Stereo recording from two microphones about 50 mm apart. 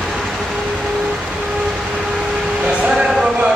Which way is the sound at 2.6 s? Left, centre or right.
Right.